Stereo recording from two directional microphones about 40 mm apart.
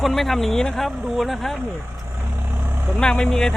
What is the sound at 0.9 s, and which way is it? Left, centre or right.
Speech, centre.